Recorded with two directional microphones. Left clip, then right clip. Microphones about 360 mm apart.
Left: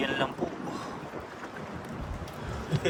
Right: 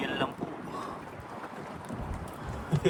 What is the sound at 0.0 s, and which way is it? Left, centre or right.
Boat, centre.